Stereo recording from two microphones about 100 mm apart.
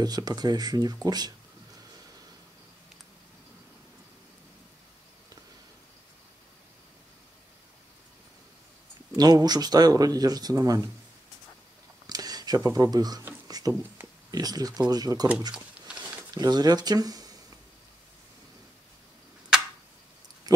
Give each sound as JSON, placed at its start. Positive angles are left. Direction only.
{"t": 0.0, "sound": "speech", "side_deg": -40}
{"t": 9.1, "sound": "speech", "side_deg": -40}
{"t": 12.1, "sound": "a sound", "side_deg": -40}
{"t": 12.6, "sound": "speech", "side_deg": -35}
{"t": 13.5, "sound": "a sound", "side_deg": -40}
{"t": 14.3, "sound": "speech", "side_deg": -40}
{"t": 15.5, "sound": "a sound", "side_deg": -10}
{"t": 16.3, "sound": "speech", "side_deg": -45}
{"t": 20.5, "sound": "speech", "side_deg": -40}